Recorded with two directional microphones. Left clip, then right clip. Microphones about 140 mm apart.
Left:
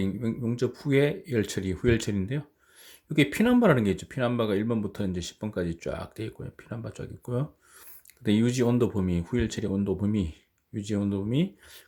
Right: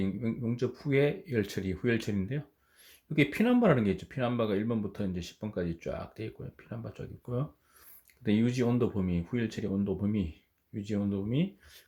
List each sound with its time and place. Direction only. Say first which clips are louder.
0.0 s speech: left 3 dB; 30° left (ahead or behind)